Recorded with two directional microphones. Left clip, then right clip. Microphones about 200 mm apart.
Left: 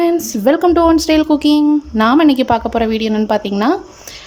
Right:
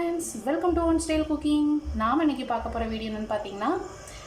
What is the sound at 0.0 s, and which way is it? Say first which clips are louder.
A woman's voice: left 16 dB; 50° left (ahead or behind).